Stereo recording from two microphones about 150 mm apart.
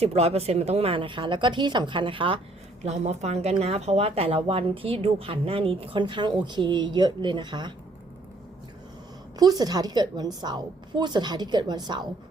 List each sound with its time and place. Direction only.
0.0 s speech: 45° right (ahead or behind)
2.8 s a woman's voice: 45° right (ahead or behind); by 7.7 s 30° right (ahead or behind)
9.4 s a woman's voice: 25° right (ahead or behind)